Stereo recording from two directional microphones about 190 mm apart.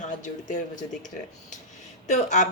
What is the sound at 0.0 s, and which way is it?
Speech, 40° left (ahead or behind).